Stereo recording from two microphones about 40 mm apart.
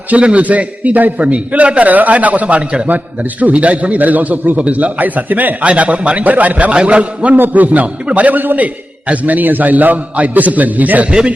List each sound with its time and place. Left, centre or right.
0.2 s a man's voice: right
5.6 s a man's voice: right
7.3 s a man's voice: right
11.0 s speech: right